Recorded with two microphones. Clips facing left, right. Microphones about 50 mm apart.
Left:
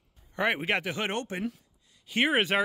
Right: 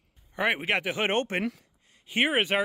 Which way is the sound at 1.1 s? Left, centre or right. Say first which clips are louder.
Right 5 dB; right.